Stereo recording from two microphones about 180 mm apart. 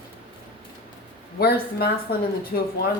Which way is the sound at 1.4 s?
60° left (ahead or behind).